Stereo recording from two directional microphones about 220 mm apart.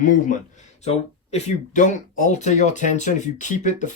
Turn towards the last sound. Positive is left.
turn(degrees=35)  # may be behind; listen again after turning